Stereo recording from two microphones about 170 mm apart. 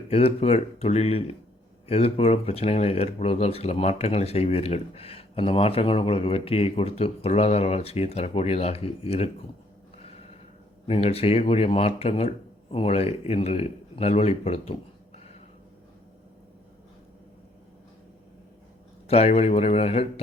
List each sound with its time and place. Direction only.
0.1 s speech: 35° left (ahead or behind)
10.8 s a man's voice: 35° left (ahead or behind)
19.0 s speech: 35° left (ahead or behind)